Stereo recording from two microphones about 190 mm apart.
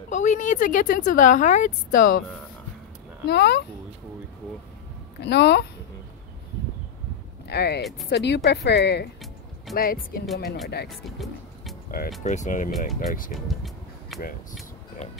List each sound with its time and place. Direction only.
0.1 s a woman's voice: 40° left (ahead or behind)
3.3 s speech: 60° left (ahead or behind)
5.2 s speech: 65° left (ahead or behind)
7.4 s speech: 60° left (ahead or behind)
9.8 s speech: 50° left (ahead or behind)
10.9 s speech: centre (ahead or behind)
12.2 s a woman's voice: 40° left (ahead or behind)
13.3 s speech: centre (ahead or behind)